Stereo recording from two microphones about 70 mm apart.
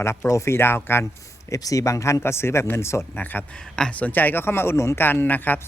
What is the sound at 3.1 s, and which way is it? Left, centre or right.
Speech, left.